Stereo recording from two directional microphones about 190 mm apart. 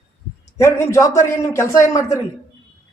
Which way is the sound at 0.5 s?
15° left (ahead or behind).